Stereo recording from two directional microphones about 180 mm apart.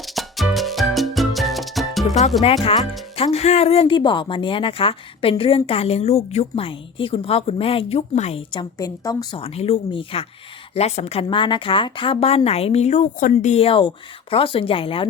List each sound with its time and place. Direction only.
0.0 s music: centre (ahead or behind)
3.2 s a woman's voice: 35° left (ahead or behind)
8.8 s a woman's voice: 20° left (ahead or behind)
9.4 s a woman's voice: 35° left (ahead or behind)